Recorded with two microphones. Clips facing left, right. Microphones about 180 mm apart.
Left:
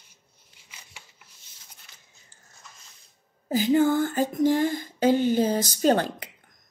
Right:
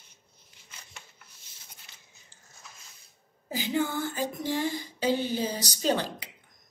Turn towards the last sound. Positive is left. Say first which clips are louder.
# left 6 dB
turn(degrees=50)  # may be behind; listen again after turning